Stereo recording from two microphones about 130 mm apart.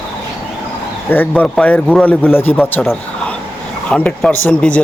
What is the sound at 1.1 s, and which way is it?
Speech, 15° left (ahead or behind).